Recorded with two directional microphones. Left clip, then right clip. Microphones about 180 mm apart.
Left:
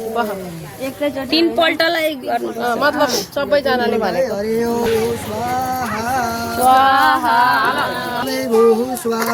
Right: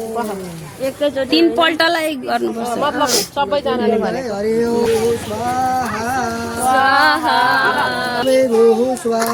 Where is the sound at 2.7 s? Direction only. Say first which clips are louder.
Left 4 dB; 90° left.